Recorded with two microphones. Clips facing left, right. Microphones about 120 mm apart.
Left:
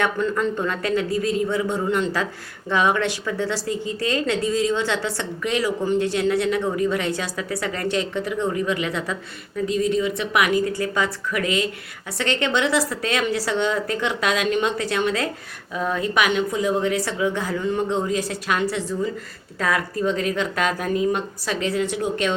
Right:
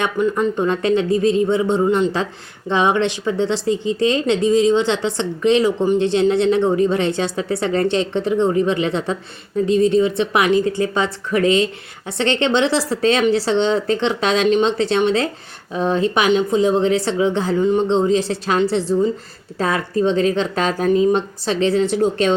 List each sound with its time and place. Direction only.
0.0 s speech: 20° right (ahead or behind)